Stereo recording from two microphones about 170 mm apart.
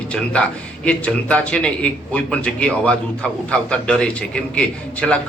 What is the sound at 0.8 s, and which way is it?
A man's voice, 10° left (ahead or behind).